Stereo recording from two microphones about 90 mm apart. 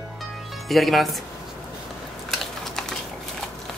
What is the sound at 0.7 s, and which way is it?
Speech, centre (ahead or behind).